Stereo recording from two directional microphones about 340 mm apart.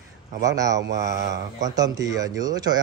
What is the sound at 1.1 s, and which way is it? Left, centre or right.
Speech, right.